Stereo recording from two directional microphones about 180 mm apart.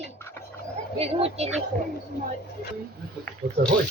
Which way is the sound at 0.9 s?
35° right (ahead or behind).